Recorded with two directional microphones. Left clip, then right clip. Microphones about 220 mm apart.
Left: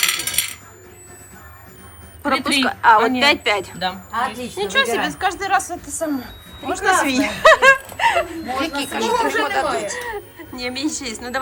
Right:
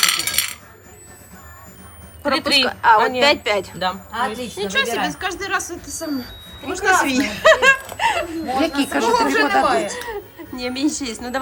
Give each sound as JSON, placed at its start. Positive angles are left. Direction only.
{"t": 0.0, "sound": "coin", "side_deg": 0}
{"t": 2.2, "sound": "speech", "side_deg": 0}
{"t": 8.7, "sound": "a woman's voice", "side_deg": -45}
{"t": 10.0, "sound": "speech", "side_deg": -10}